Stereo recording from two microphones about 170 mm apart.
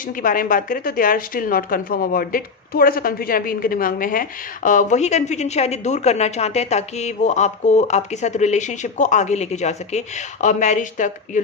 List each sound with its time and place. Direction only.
0.0 s speech: 55° left (ahead or behind)